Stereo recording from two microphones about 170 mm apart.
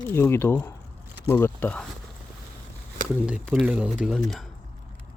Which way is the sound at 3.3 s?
5° right (ahead or behind).